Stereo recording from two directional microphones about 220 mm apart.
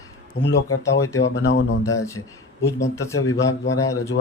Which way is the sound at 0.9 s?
15° left (ahead or behind).